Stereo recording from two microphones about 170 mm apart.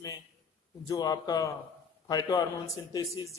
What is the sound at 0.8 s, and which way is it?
A man's voice, 20° left (ahead or behind).